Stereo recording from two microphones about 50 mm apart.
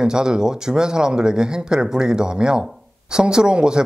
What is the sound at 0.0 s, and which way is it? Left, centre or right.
Speech, centre.